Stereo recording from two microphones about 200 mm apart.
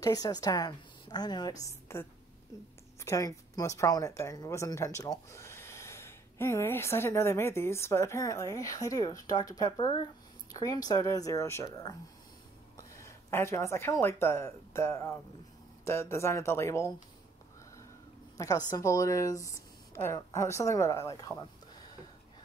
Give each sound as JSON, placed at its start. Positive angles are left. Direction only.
{"t": 0.0, "sound": "a woman's voice", "side_deg": 20}
{"t": 18.7, "sound": "a woman's voice", "side_deg": 15}